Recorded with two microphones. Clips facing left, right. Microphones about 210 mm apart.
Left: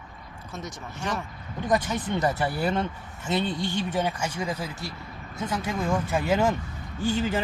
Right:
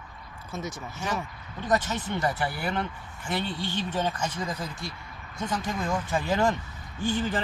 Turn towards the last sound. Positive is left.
turn(degrees=10)  # may be behind; listen again after turning